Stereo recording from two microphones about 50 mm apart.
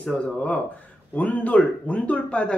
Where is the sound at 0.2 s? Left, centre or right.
Left.